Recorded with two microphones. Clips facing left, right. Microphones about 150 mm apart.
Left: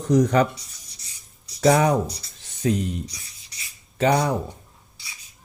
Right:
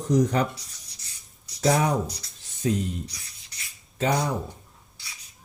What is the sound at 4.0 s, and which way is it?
Speech, 65° left (ahead or behind).